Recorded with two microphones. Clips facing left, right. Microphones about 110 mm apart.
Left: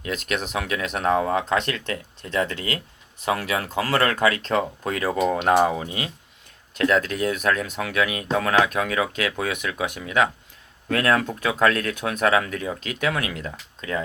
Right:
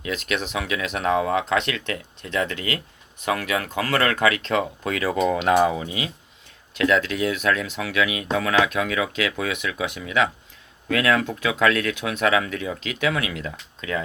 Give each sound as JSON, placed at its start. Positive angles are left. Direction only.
{"t": 0.0, "sound": "speech", "side_deg": 45}